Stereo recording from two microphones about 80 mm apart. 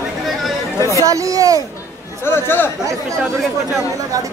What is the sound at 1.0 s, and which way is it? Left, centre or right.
Speech, right.